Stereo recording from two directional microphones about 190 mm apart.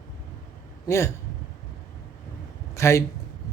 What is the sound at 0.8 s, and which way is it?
Speech, 15° left (ahead or behind).